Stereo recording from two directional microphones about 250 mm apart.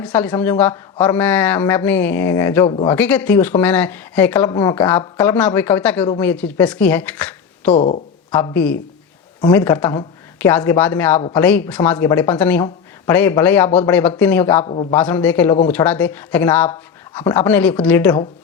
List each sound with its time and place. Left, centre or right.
0.0 s speech: centre
2.6 s speech: centre
2.9 s speech: centre
7.7 s speech: left
8.3 s speech: centre
14.6 s speech: left
14.9 s speech: centre